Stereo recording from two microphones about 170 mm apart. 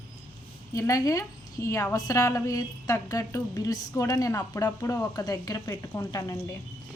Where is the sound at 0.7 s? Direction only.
20° left (ahead or behind).